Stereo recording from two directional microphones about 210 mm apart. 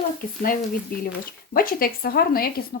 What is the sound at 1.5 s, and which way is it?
A woman's voice, 45° left (ahead or behind).